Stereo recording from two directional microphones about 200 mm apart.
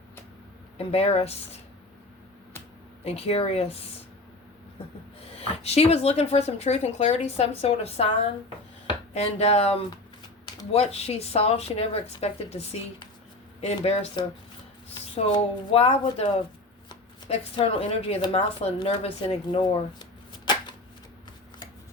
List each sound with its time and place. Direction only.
0.8 s a woman's voice: 30° left (ahead or behind)
3.0 s speech: 30° left (ahead or behind)
5.2 s speech: 30° left (ahead or behind)
9.1 s a woman's voice: 30° left (ahead or behind)
17.6 s speech: 30° left (ahead or behind)